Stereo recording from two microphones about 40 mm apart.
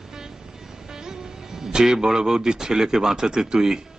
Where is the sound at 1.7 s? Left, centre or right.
Centre.